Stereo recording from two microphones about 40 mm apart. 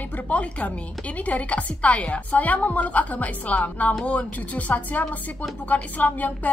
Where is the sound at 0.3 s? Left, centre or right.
Left.